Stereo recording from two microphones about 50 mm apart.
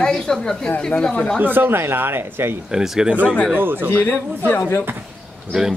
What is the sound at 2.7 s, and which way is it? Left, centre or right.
Speech, centre.